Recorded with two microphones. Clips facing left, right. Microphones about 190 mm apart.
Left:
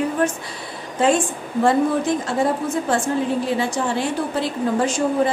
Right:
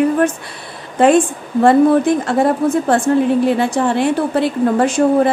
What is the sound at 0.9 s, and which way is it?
A woman's voice, 60° right (ahead or behind).